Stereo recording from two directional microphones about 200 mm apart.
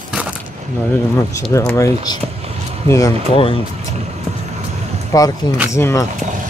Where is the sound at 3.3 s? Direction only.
30° left (ahead or behind).